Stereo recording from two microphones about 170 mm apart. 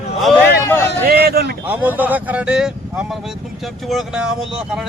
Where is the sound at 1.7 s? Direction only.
10° right (ahead or behind).